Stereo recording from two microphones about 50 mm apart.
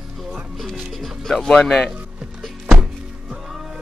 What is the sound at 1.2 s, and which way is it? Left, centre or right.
Speech, centre.